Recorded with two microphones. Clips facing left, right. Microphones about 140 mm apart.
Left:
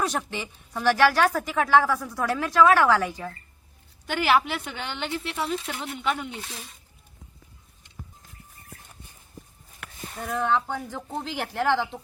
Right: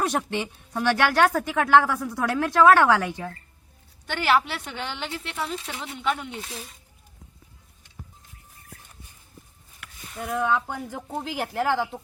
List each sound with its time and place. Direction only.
0.0 s speech: 60° right (ahead or behind)
4.0 s a woman's voice: 5° left (ahead or behind)
10.2 s a woman's voice: 10° right (ahead or behind)